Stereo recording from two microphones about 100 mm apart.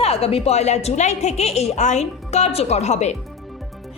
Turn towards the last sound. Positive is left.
turn(degrees=90)